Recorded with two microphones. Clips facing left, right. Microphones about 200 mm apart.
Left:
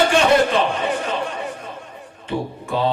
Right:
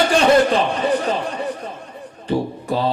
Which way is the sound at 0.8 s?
35° right (ahead or behind).